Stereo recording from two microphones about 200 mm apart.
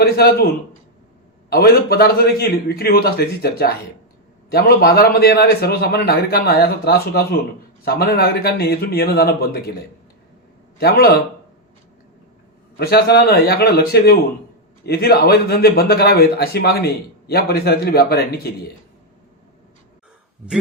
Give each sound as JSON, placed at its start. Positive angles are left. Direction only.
{"t": 0.0, "sound": "a man's voice", "side_deg": 50}
{"t": 10.8, "sound": "a man's voice", "side_deg": 50}
{"t": 12.7, "sound": "a man's voice", "side_deg": 50}